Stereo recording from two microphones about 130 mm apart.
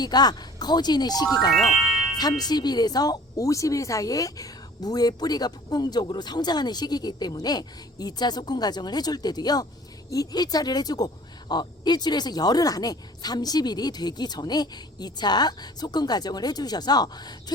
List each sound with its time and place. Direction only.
0.0 s speech: 30° left (ahead or behind)